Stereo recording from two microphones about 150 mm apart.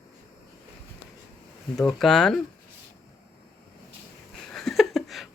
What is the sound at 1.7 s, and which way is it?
Speech, 5° left (ahead or behind).